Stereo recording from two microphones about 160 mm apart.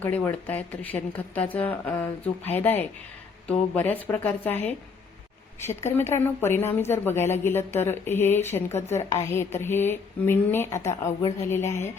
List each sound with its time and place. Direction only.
0.0 s a woman's voice: 10° left (ahead or behind)